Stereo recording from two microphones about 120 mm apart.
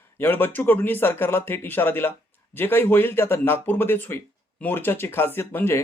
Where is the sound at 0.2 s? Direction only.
15° left (ahead or behind).